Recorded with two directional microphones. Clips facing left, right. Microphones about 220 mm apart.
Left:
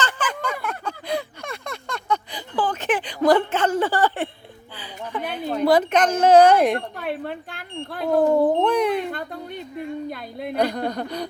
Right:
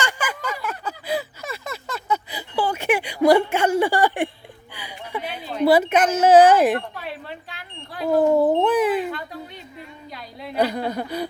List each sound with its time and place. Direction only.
0.0 s a sound: 10° right (ahead or behind)
5.6 s speech: 5° right (ahead or behind)
6.7 s smoke detector: 50° left (ahead or behind)
8.0 s cat: 5° right (ahead or behind)
9.7 s a sound: 55° left (ahead or behind)
10.6 s speech: 5° right (ahead or behind)